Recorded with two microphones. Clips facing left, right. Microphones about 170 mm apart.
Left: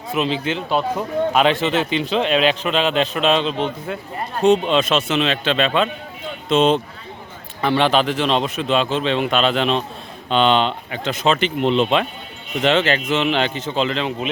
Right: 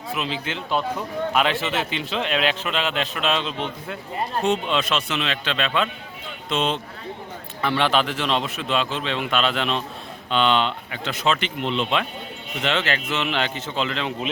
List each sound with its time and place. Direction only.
0.2 s a man's voice: 25° left (ahead or behind)